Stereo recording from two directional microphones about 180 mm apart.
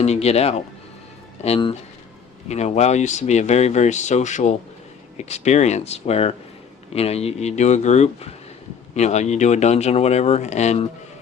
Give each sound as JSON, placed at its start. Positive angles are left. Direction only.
{"t": 0.0, "sound": "speech", "side_deg": 35}